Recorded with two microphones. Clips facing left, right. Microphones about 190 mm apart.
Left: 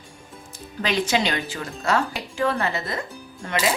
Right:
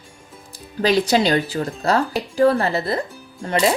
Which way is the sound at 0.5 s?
35° right (ahead or behind).